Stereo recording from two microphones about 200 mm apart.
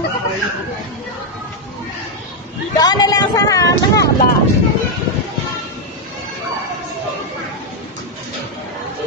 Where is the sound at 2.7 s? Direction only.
20° left (ahead or behind).